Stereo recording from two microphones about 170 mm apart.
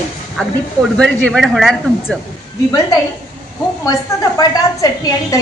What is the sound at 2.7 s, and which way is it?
A woman's voice, 20° left (ahead or behind).